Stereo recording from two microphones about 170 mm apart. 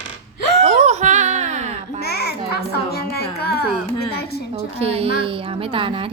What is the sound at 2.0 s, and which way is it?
A child's voice, 65° left (ahead or behind).